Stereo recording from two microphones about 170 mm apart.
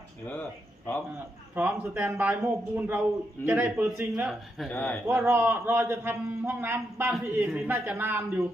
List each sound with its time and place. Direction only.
1.5 s a man's voice: 10° right (ahead or behind)
4.7 s speech: 10° left (ahead or behind)
5.0 s a man's voice: 15° right (ahead or behind)